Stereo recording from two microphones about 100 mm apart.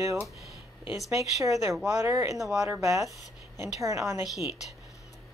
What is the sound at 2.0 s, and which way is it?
Speech, 30° right (ahead or behind).